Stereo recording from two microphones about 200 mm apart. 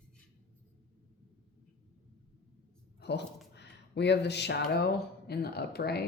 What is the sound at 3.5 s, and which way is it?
Speech, 60° left (ahead or behind).